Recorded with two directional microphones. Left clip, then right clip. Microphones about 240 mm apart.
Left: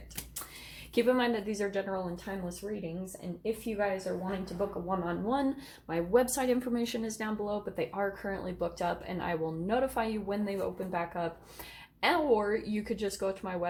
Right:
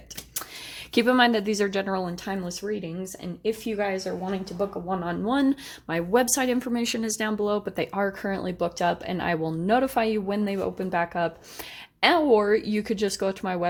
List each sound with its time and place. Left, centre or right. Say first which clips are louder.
0.9 s speech: right 7 dB; right